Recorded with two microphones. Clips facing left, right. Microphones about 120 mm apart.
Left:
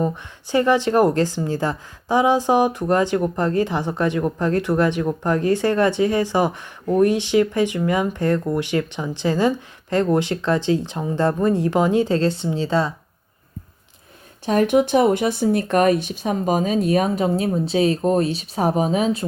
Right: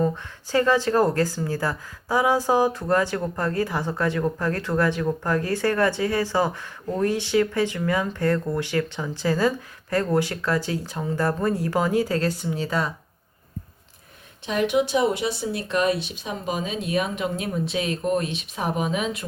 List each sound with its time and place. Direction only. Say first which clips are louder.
0.5 s a woman's voice: left 3 dB; 20° left (ahead or behind)
14.4 s speech: left 5 dB; 45° left (ahead or behind)